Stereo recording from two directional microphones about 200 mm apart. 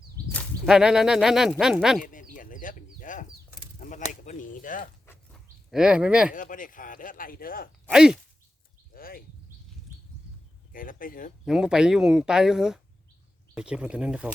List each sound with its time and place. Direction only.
0.3 s speech: centre (ahead or behind)
2.1 s chicken: 40° left (ahead or behind)
3.8 s speech: 40° left (ahead or behind)
5.0 s a sound: centre (ahead or behind)
6.3 s speech: 40° left (ahead or behind)
7.9 s speech: 5° right (ahead or behind)
8.9 s a sound: 45° left (ahead or behind)
10.7 s speech: 45° left (ahead or behind)
11.4 s speech: 5° right (ahead or behind)